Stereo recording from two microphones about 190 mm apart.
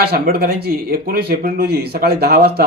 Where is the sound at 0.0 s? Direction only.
55° right (ahead or behind).